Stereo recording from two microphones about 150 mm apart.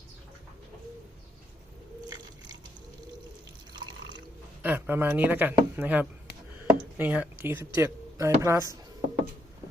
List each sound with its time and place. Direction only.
4.6 s speech: 10° right (ahead or behind)